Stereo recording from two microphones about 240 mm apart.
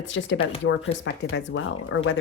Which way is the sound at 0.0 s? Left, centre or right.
Left.